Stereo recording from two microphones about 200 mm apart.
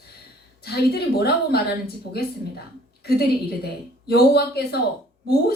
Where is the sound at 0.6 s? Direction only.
55° left (ahead or behind).